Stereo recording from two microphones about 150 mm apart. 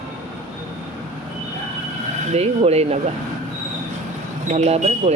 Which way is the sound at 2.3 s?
45° right (ahead or behind).